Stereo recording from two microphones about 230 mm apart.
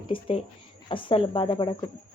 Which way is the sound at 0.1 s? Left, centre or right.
Left.